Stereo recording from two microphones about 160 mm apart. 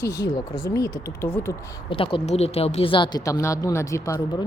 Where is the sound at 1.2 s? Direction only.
15° left (ahead or behind).